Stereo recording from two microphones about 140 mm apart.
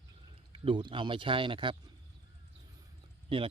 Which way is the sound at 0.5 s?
40° right (ahead or behind).